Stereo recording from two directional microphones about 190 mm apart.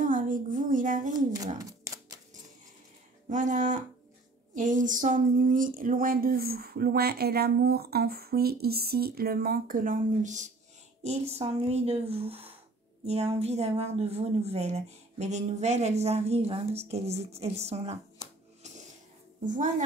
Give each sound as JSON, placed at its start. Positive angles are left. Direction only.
{"t": 0.0, "sound": "a woman's voice", "side_deg": -45}
{"t": 1.1, "sound": "speech", "side_deg": -20}
{"t": 1.6, "sound": "typewriter", "side_deg": -15}
{"t": 3.3, "sound": "speech", "side_deg": -40}
{"t": 19.4, "sound": "speech", "side_deg": -40}